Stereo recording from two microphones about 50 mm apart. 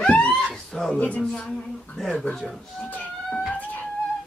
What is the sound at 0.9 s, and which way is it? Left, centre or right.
Speech, left.